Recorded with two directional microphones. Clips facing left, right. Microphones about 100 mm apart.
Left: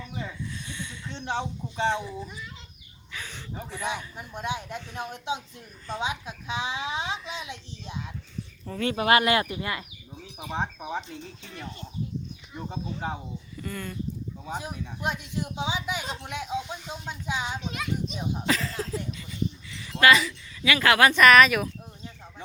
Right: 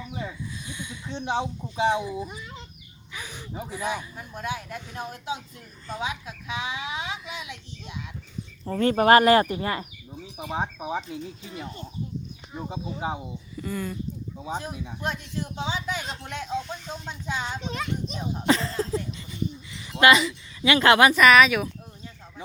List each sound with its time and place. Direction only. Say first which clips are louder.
0.0 s a sound: right 1 dB; 10° right (ahead or behind)
4.4 s a child's voice: even; 25° left (ahead or behind)
8.6 s speech: right 6 dB; 40° right (ahead or behind)
10.5 s speech: right 2 dB; 10° right (ahead or behind)
15.0 s speech: left 1 dB; 15° left (ahead or behind)
17.6 s speech: right 1 dB; 35° right (ahead or behind)
19.7 s speech: right 2 dB; 20° right (ahead or behind)
21.1 s speech: even; centre (ahead or behind)